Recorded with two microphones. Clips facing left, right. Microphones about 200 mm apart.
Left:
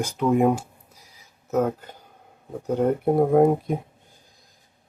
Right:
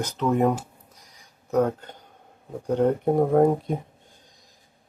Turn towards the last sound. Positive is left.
turn(degrees=10)  # may be behind; listen again after turning